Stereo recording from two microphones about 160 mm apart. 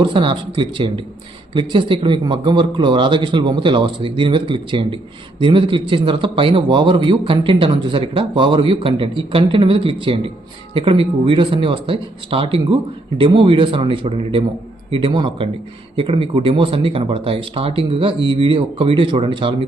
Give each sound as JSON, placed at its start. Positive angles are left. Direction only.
{"t": 0.0, "sound": "a man's voice", "side_deg": -30}